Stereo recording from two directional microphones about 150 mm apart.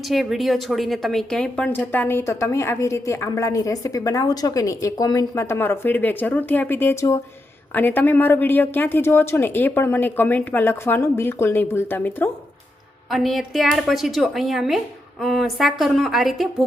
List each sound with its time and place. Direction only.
0.1 s speech: centre (ahead or behind)
13.1 s a woman's voice: centre (ahead or behind)